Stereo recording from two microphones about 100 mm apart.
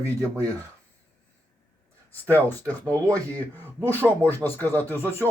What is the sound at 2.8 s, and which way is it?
Speech, 35° right (ahead or behind).